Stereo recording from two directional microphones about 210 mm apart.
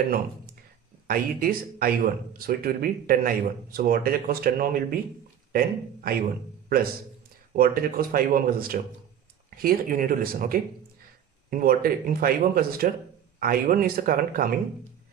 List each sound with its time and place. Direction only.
1.0 s speech: 45° right (ahead or behind)
7.5 s speech: 45° right (ahead or behind)